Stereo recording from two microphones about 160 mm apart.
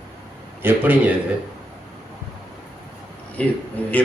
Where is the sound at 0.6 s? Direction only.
10° right (ahead or behind).